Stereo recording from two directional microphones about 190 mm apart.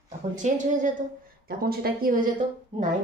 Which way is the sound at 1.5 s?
50° right (ahead or behind).